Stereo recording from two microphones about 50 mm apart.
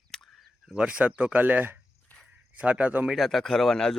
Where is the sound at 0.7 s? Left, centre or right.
Right.